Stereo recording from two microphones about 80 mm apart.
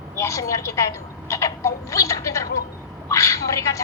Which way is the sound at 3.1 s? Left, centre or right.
Left.